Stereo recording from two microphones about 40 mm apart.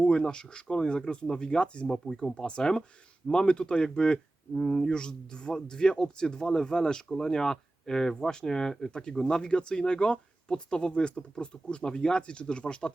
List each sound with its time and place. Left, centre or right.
0.0 s speech: left
2.0 s speech: centre